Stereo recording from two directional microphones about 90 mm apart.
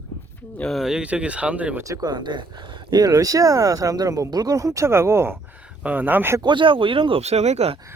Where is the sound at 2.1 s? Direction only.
55° right (ahead or behind).